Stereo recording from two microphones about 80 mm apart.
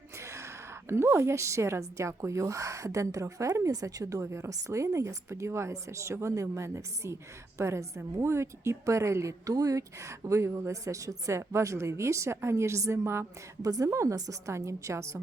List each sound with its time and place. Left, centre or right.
0.2 s a woman's voice: right
13.6 s a woman's voice: right